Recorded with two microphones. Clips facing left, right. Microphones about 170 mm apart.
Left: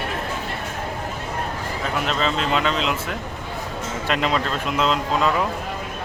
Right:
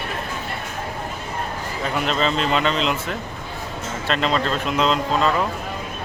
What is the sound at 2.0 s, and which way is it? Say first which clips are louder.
Speech: right 2 dB; centre (ahead or behind).